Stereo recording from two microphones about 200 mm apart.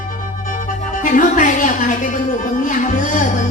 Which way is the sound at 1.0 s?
40° left (ahead or behind).